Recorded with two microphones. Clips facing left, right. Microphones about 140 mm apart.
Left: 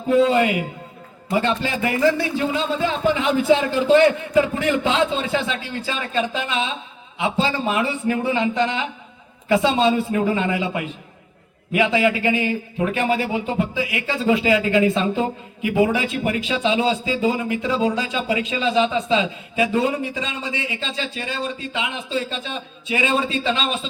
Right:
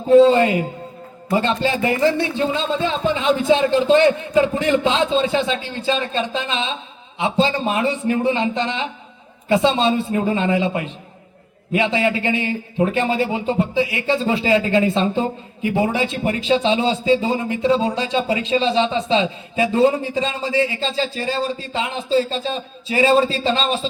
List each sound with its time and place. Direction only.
0.1 s a man's voice: 30° right (ahead or behind)